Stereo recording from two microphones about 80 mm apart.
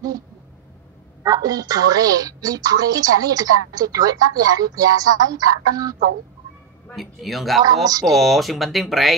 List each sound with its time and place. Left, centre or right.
1.2 s a woman's voice: right
7.0 s speech: centre
7.6 s a woman's voice: right
8.0 s speech: centre